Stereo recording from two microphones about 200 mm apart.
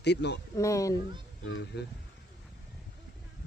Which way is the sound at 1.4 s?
75° left (ahead or behind).